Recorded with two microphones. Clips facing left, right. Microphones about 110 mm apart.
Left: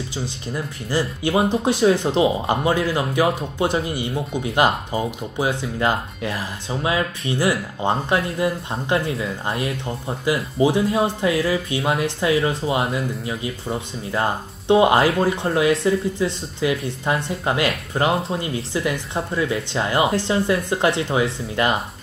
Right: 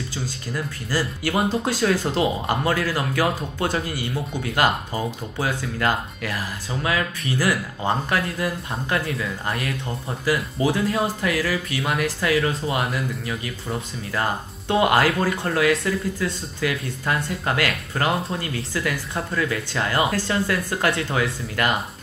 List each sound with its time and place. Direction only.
0.2 s speech: 20° left (ahead or behind)